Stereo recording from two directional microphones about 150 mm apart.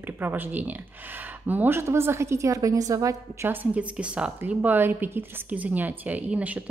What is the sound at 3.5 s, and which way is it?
A woman's voice, 10° right (ahead or behind).